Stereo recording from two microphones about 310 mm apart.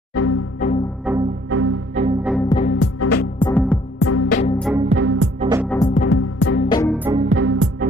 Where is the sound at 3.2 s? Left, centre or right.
Centre.